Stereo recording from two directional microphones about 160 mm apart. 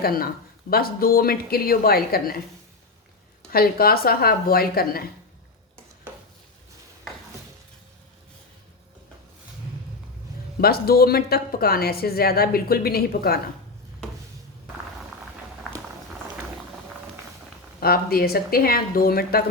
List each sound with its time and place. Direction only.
0.0 s a woman's voice: 65° left (ahead or behind)
3.5 s a woman's voice: 70° left (ahead or behind)
10.6 s a woman's voice: 75° left (ahead or behind)
17.7 s a woman's voice: 70° left (ahead or behind)